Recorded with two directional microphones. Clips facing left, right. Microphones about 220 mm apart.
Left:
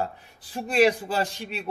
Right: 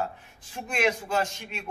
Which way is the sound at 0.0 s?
35° left (ahead or behind).